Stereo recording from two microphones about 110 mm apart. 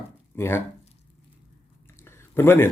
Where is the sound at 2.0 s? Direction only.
20° left (ahead or behind).